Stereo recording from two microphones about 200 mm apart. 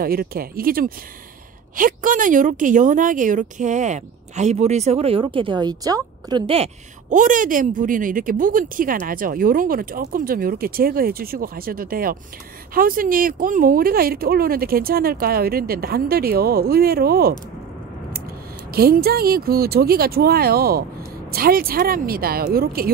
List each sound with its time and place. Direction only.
0.0 s a woman's voice: 50° right (ahead or behind)
18.7 s speech: 50° right (ahead or behind)